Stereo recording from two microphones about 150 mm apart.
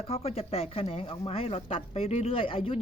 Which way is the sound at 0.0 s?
40° left (ahead or behind).